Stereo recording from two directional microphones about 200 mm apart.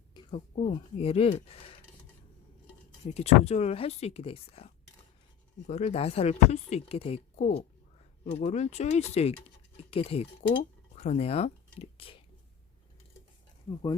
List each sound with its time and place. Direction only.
0.1 s a sound: 25° left (ahead or behind)
0.7 s speech: 30° left (ahead or behind)
3.0 s speech: 30° left (ahead or behind)